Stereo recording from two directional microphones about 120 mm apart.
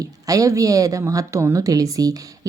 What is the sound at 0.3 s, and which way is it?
A woman's voice, 30° right (ahead or behind).